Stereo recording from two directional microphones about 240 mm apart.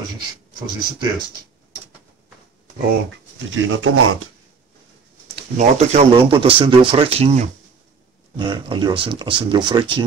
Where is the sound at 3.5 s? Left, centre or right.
Right.